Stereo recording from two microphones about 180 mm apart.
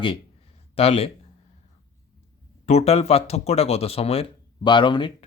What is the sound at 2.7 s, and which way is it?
Speech, 35° left (ahead or behind).